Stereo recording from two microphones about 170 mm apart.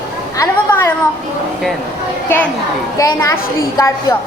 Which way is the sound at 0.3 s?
15° left (ahead or behind).